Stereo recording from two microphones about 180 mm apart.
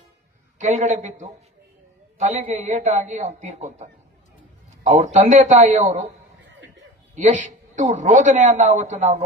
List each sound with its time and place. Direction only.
0.6 s a man's voice: 40° right (ahead or behind)
7.2 s a man's voice: 40° right (ahead or behind)